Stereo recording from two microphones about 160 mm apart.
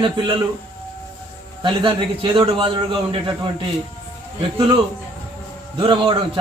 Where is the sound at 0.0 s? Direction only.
30° right (ahead or behind).